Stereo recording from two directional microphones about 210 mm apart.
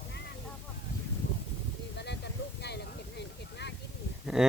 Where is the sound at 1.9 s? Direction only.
55° left (ahead or behind).